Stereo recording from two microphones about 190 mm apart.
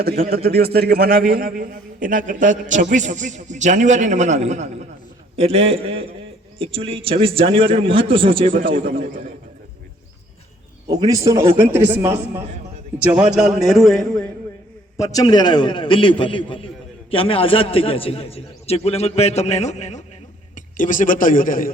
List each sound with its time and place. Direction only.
0.0 s a man's voice: 55° right (ahead or behind); by 9.0 s 30° right (ahead or behind)
10.8 s a man's voice: 20° right (ahead or behind); by 14.3 s centre (ahead or behind)
14.9 s a man's voice: 20° left (ahead or behind); by 21.7 s 45° left (ahead or behind)